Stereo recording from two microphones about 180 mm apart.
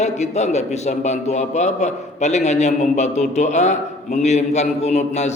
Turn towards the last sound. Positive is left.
turn(degrees=40)  # may be behind; listen again after turning